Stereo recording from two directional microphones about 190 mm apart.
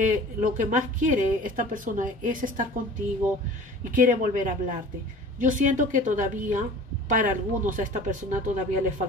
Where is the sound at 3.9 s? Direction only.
45° right (ahead or behind).